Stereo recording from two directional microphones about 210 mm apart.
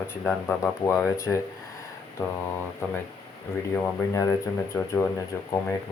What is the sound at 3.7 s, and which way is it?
Speech, 10° left (ahead or behind).